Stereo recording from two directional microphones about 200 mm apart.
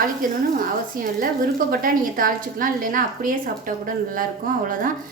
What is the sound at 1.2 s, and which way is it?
A woman's voice, 45° right (ahead or behind).